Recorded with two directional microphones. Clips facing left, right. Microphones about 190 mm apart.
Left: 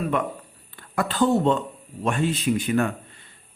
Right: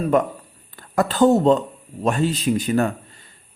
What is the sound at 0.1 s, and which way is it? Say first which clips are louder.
A man's voice: right 7 dB; 45° right (ahead or behind).